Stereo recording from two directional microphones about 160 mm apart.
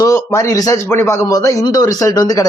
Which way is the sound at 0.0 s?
20° left (ahead or behind).